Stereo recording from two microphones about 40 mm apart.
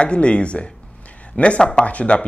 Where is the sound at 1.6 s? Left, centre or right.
Centre.